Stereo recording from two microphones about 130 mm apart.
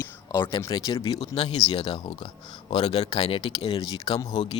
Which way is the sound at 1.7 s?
40° left (ahead or behind).